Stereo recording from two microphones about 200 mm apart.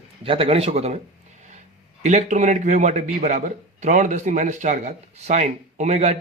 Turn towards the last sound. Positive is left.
turn(degrees=-35)  # may be behind; listen again after turning